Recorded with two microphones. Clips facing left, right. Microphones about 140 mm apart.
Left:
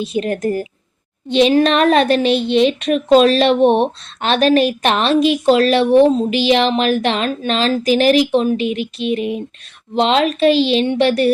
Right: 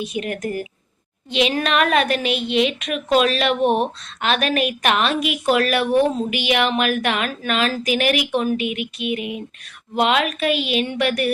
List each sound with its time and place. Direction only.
0.0 s a woman's voice: 30° left (ahead or behind)